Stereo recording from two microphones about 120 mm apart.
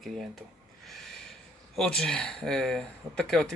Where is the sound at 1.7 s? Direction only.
5° left (ahead or behind).